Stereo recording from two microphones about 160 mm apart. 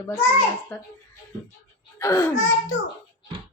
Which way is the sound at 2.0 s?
20° left (ahead or behind).